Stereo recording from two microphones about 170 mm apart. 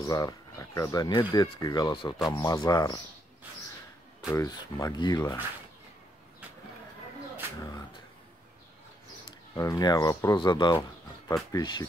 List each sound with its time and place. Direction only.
0.0 s speech: 20° left (ahead or behind)
4.3 s speech: 20° left (ahead or behind)
9.6 s speech: 20° left (ahead or behind)